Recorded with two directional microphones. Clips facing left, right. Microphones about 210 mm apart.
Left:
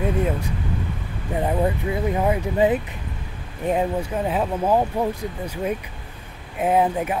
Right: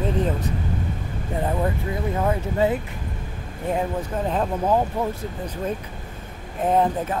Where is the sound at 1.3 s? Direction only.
15° left (ahead or behind).